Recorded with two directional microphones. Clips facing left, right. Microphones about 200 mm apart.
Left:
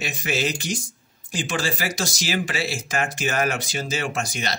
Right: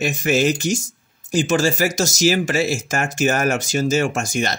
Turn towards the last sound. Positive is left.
turn(degrees=-50)  # may be behind; listen again after turning